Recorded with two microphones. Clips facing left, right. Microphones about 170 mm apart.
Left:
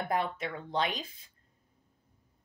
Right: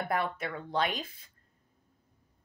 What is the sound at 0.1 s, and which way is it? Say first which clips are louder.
Speech: left 1 dB; 20° left (ahead or behind).